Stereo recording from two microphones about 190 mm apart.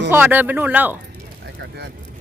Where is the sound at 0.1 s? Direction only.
10° right (ahead or behind).